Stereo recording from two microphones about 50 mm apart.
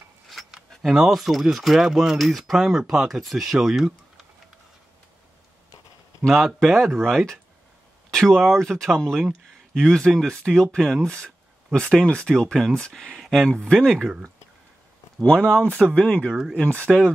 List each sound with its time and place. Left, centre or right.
0.6 s speech: centre
6.3 s speech: centre
8.1 s a sound: centre
8.5 s speech: centre
9.9 s speech: centre
15.2 s speech: left